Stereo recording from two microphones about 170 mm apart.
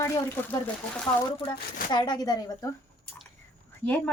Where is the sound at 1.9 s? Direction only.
25° left (ahead or behind).